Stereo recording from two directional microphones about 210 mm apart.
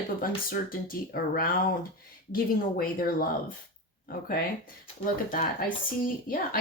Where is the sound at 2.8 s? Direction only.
45° left (ahead or behind).